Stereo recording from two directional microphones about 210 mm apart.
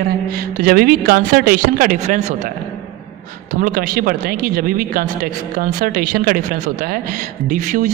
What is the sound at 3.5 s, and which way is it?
Speech, 40° right (ahead or behind).